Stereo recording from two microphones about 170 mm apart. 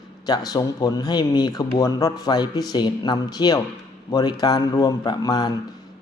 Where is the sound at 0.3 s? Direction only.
20° left (ahead or behind).